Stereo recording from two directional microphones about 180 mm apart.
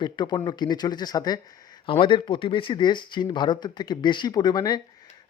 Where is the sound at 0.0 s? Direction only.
25° left (ahead or behind).